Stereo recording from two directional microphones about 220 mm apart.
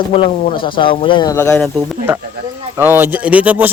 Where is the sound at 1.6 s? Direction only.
Centre (ahead or behind).